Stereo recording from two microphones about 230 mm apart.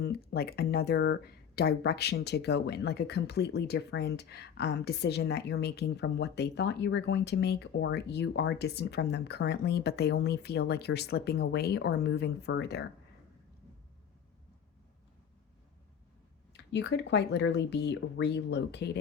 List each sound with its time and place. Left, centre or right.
0.0 s speech: left
16.5 s speech: left